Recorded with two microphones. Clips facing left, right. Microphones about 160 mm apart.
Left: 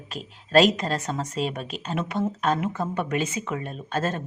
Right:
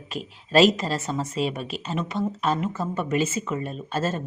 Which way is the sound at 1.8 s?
Centre (ahead or behind).